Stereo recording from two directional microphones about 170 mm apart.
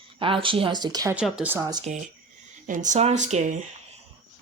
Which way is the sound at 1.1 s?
5° right (ahead or behind).